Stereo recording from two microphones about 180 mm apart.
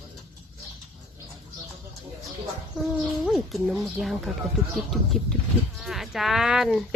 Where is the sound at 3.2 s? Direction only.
Centre (ahead or behind).